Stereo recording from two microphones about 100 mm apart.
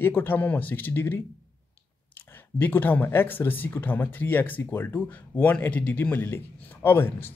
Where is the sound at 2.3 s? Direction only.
20° left (ahead or behind).